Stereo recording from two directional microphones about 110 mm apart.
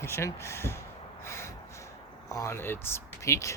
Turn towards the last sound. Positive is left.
turn(degrees=25)  # may be behind; listen again after turning